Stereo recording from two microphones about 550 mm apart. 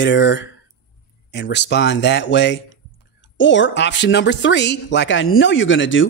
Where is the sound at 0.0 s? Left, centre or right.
Centre.